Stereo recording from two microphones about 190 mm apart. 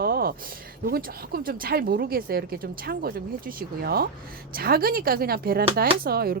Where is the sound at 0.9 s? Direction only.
50° right (ahead or behind).